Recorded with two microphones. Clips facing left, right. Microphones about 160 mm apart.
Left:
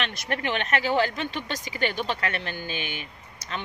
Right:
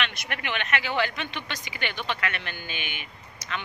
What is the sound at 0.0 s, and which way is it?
Speech, 35° left (ahead or behind).